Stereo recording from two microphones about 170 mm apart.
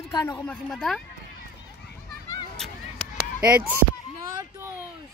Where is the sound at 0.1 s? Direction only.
20° left (ahead or behind).